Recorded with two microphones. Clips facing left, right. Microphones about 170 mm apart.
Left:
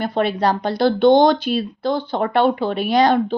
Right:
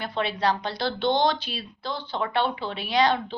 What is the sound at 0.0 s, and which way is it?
Speech, 45° left (ahead or behind).